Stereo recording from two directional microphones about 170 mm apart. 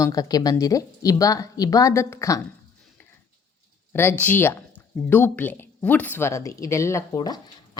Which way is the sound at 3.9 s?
15° left (ahead or behind).